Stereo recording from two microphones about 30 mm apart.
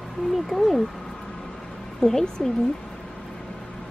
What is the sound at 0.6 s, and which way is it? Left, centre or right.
Speech, centre.